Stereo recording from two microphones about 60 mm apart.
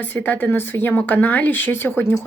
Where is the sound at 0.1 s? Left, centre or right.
Left.